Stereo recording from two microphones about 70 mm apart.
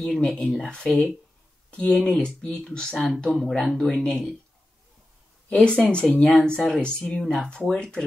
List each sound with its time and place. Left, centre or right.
0.0 s speech: centre
2.0 s speech: centre
5.5 s speech: centre